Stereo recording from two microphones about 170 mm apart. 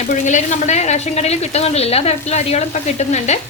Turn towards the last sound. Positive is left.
turn(degrees=40)  # may be behind; listen again after turning